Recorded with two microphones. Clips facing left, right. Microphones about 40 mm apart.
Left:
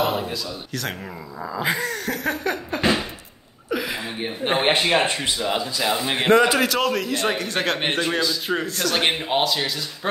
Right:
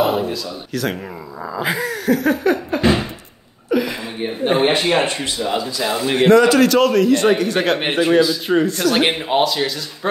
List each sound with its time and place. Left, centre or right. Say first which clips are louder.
0.0 s a man's voice: right 5 dB; centre
3.7 s a sound: right 6 dB; centre
4.6 s a man's voice: right 2 dB; centre
6.4 s a man's voice: right 6 dB; centre